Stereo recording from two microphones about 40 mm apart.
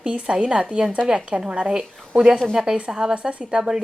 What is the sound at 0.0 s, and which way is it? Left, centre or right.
A woman's voice, right.